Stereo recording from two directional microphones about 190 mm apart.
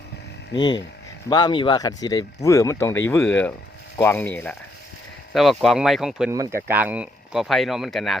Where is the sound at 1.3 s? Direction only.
25° left (ahead or behind).